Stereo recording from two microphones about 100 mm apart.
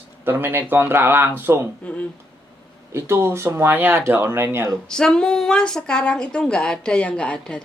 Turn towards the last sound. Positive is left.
turn(degrees=10)  # may be behind; listen again after turning